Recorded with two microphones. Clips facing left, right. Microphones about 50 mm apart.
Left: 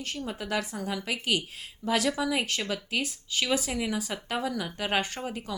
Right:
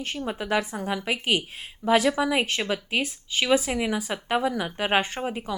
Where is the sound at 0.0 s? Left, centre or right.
Right.